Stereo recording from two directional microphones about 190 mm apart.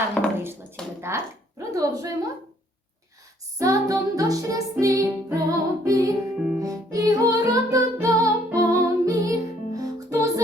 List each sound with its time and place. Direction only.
0.2 s a sound: 5° left (ahead or behind)
1.0 s speech: 15° right (ahead or behind)
3.6 s music: 15° right (ahead or behind)